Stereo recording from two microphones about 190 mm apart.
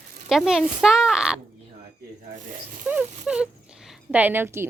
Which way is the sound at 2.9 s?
5° right (ahead or behind).